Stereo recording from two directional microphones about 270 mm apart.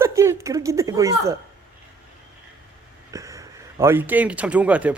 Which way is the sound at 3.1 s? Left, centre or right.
Centre.